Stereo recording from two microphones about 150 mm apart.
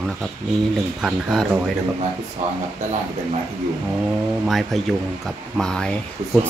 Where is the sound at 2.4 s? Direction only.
55° right (ahead or behind).